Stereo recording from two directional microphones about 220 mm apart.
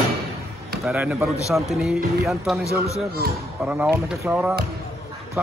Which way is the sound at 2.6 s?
15° left (ahead or behind).